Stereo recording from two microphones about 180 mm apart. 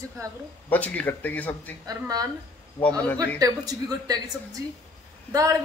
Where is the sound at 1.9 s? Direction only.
20° right (ahead or behind).